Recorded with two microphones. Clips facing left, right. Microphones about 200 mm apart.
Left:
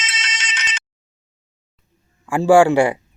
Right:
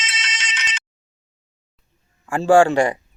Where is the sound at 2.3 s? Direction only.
10° left (ahead or behind).